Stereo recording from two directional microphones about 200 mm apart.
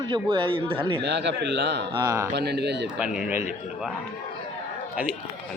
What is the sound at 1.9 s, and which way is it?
Speech, 15° right (ahead or behind).